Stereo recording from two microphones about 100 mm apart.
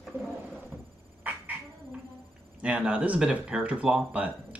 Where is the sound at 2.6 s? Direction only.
10° right (ahead or behind).